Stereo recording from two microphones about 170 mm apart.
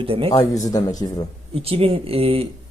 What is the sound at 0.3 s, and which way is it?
Speech, 45° left (ahead or behind).